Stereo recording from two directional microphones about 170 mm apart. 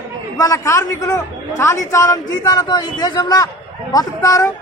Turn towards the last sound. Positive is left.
turn(degrees=20)  # may be behind; listen again after turning